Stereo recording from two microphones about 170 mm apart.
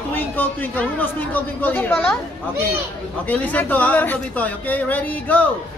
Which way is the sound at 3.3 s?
10° left (ahead or behind).